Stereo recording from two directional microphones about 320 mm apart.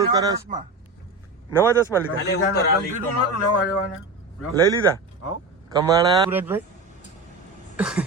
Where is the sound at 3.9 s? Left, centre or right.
Left.